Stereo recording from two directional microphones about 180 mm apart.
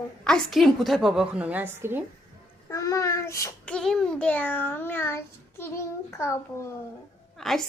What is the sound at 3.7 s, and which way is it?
A child's voice, centre (ahead or behind).